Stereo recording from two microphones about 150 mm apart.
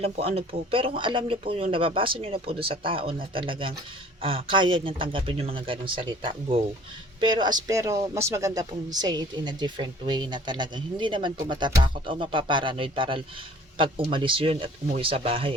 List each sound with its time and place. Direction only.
0.0 s speech: 40° right (ahead or behind)